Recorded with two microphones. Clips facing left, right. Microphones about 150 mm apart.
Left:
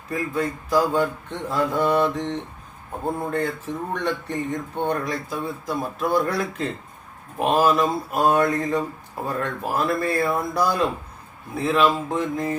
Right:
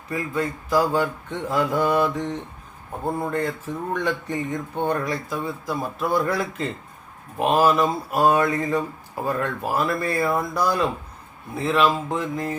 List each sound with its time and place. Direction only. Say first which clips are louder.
0.1 s speech: left 1 dB; centre (ahead or behind)